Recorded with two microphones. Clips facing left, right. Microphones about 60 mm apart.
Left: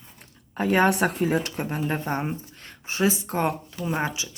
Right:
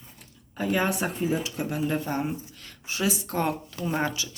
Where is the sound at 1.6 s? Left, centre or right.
Left.